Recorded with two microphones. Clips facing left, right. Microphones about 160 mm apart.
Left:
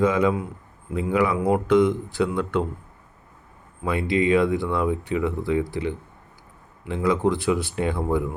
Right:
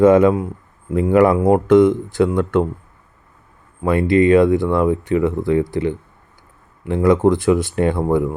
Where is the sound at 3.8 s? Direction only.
50° right (ahead or behind).